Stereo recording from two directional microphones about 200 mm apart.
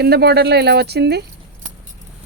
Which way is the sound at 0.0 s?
55° right (ahead or behind).